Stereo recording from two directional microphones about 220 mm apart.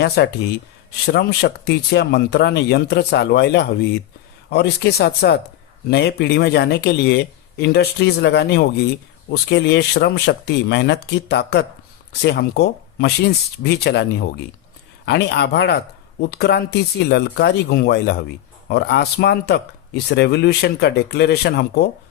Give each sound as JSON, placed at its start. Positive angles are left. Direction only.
{"t": 0.2, "sound": "speech", "side_deg": 50}